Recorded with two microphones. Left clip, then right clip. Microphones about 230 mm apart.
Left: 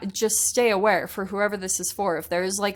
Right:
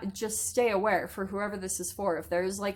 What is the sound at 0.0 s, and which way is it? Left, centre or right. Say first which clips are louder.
A woman's voice: left 10 dB; left.